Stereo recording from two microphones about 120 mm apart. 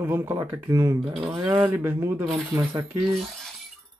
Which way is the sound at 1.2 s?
5° right (ahead or behind).